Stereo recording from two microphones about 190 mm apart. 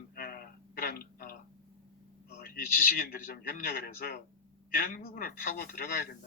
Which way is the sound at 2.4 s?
50° left (ahead or behind).